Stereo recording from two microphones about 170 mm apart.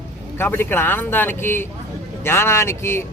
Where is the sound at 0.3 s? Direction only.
10° left (ahead or behind).